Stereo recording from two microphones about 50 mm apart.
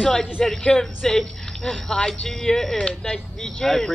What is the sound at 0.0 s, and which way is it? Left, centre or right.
Speech, centre.